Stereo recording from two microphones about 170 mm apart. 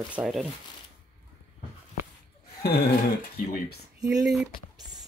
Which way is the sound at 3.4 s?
65° left (ahead or behind).